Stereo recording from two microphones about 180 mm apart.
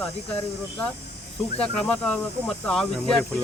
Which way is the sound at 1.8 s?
5° left (ahead or behind).